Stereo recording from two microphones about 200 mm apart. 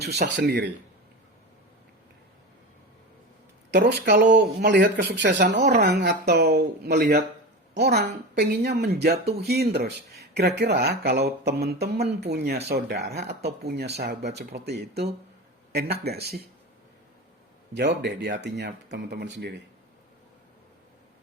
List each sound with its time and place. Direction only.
0.0 s speech: 55° right (ahead or behind)
3.7 s speech: 55° right (ahead or behind)
17.7 s speech: 60° right (ahead or behind)